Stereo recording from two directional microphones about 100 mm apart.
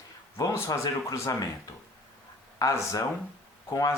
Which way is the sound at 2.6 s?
35° left (ahead or behind).